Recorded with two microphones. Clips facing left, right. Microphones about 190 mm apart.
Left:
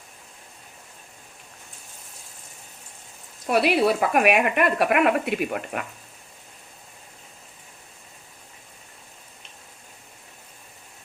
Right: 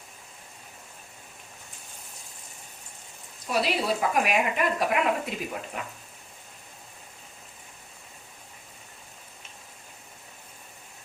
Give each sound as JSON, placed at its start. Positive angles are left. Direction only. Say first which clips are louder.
{"t": 3.4, "sound": "speech", "louder": "left 7 dB", "side_deg": 60}